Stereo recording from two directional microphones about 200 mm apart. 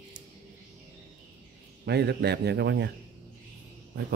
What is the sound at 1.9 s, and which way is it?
A man's voice, 55° right (ahead or behind).